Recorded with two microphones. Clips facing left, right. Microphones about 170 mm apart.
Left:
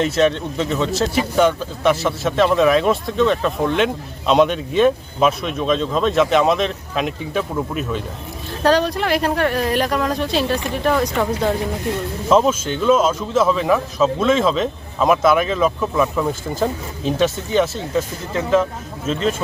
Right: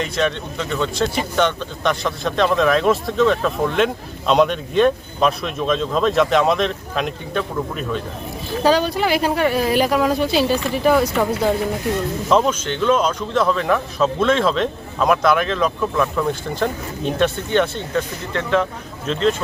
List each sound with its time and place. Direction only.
0.3 s speech: 30° left (ahead or behind)
0.7 s a man's voice: 5° left (ahead or behind)